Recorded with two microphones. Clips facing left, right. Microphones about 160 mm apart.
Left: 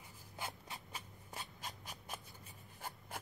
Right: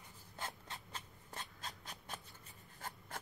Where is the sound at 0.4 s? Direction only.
10° left (ahead or behind).